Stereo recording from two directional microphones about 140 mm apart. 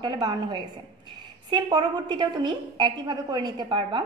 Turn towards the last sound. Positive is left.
turn(degrees=-35)  # may be behind; listen again after turning